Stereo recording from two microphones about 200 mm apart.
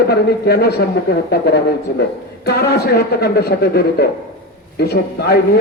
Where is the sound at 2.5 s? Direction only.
50° left (ahead or behind).